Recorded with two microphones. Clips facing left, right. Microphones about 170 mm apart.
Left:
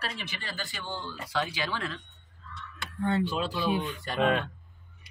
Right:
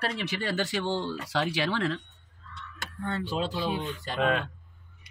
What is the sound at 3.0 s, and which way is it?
Speech, 20° left (ahead or behind).